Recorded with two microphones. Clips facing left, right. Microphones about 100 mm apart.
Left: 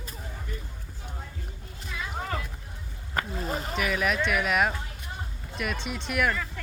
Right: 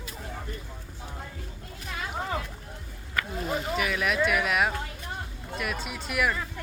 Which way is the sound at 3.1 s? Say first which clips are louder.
Even; 35° left (ahead or behind).